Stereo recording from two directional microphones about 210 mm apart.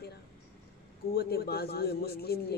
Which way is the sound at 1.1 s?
50° left (ahead or behind).